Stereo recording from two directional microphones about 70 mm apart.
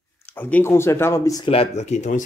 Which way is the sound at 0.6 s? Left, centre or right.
Left.